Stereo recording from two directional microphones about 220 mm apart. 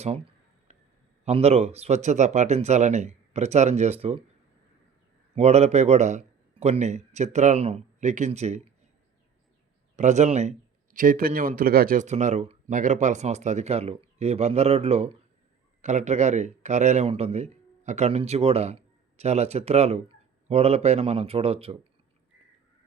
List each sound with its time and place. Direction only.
0.7 s a sound: 30° right (ahead or behind)
1.2 s speech: 30° right (ahead or behind)
5.3 s a man's voice: 30° right (ahead or behind)
9.9 s a man's voice: 35° right (ahead or behind)